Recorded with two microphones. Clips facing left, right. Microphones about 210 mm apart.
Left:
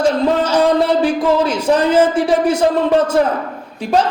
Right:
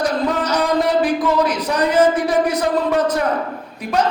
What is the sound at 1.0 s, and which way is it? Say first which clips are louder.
Speech: left 3 dB; 30° left (ahead or behind).